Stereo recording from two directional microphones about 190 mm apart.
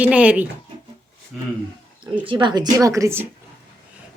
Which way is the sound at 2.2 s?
25° right (ahead or behind).